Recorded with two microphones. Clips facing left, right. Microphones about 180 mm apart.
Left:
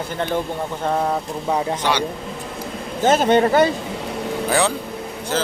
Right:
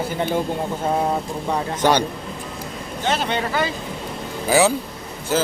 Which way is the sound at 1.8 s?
45° right (ahead or behind).